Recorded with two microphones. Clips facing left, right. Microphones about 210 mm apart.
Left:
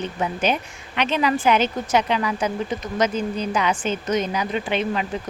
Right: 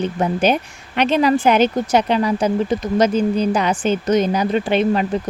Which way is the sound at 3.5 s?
40° right (ahead or behind).